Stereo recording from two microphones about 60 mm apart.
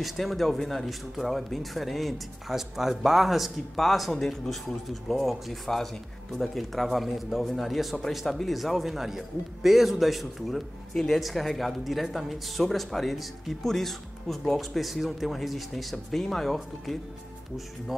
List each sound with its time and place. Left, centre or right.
0.0 s speech: centre